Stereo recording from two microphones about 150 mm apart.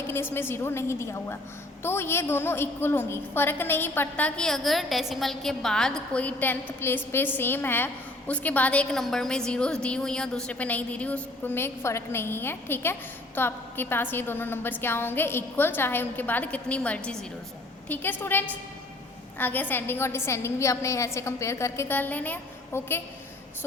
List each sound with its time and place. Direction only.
0.1 s a woman's voice: 15° left (ahead or behind)